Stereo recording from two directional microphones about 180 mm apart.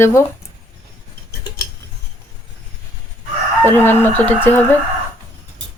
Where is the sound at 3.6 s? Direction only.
10° left (ahead or behind).